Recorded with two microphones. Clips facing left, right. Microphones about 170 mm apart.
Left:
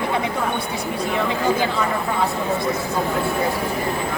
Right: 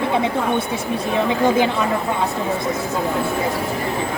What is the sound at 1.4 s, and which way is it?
Speech, 20° right (ahead or behind).